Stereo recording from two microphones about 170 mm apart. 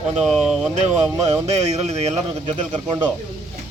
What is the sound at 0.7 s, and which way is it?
A man's voice, 40° right (ahead or behind).